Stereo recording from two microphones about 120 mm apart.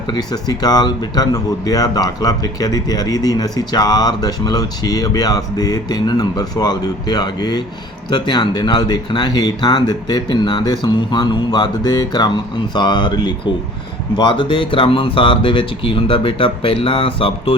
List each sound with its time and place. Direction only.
0.1 s speech: 35° left (ahead or behind); by 17.6 s 50° left (ahead or behind)